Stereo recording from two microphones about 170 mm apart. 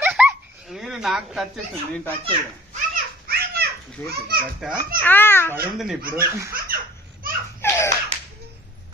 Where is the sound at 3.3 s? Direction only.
60° right (ahead or behind).